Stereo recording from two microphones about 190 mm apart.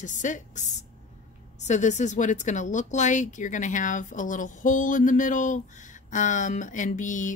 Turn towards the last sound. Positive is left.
turn(degrees=40)  # may be behind; listen again after turning